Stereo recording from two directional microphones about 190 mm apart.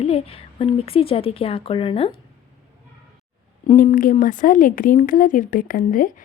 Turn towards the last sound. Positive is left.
turn(degrees=45)  # may be behind; listen again after turning